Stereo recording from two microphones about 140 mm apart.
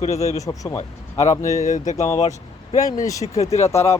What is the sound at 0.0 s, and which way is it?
Speech, 50° left (ahead or behind).